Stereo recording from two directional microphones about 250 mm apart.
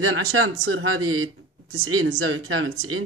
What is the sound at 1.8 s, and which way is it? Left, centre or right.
Speech, right.